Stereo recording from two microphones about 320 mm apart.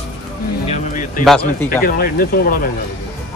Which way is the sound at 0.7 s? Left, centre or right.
Left.